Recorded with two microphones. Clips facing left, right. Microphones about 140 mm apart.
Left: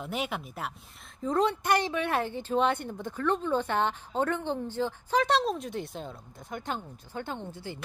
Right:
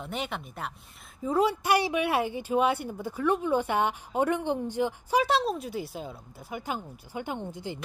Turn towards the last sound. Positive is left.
turn(degrees=-15)  # may be behind; listen again after turning